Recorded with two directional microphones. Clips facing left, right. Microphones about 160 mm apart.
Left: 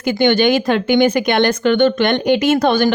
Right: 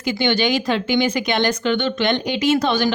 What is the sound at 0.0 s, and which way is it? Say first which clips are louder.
Speech: left 6 dB; 50° left (ahead or behind).